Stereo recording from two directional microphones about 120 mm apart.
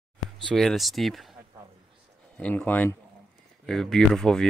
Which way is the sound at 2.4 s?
10° left (ahead or behind).